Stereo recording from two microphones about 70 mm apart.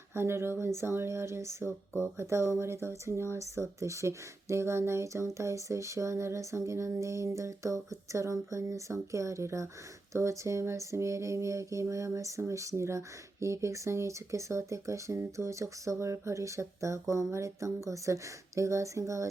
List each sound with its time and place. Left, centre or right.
0.1 s speech: right